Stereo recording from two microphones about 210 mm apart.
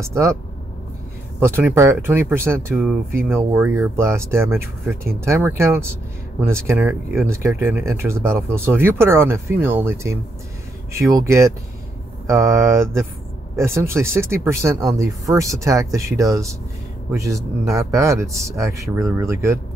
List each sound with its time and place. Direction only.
0.1 s speech: 15° right (ahead or behind)
1.4 s speech: 10° right (ahead or behind)